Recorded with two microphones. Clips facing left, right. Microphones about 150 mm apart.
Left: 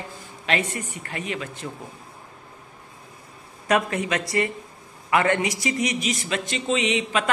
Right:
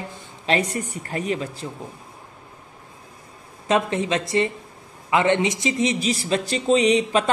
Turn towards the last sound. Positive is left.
turn(degrees=-35)  # may be behind; listen again after turning